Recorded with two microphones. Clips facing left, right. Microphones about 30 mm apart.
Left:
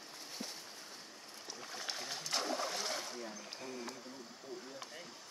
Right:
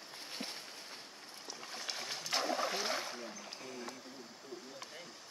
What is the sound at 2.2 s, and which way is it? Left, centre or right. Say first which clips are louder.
Splash: right 3 dB; centre.